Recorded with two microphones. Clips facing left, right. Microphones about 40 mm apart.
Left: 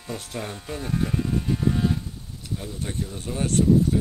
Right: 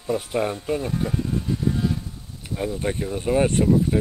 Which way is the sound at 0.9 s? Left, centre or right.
Centre.